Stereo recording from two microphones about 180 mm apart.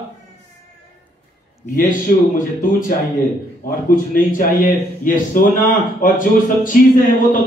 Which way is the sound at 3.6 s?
50° left (ahead or behind).